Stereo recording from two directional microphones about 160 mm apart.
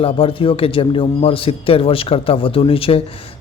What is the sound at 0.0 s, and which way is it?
A man's voice, 35° left (ahead or behind).